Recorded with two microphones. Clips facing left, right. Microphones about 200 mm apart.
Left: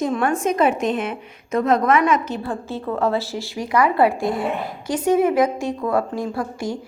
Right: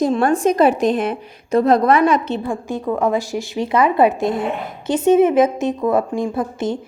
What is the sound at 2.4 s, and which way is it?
A woman's voice, 15° right (ahead or behind).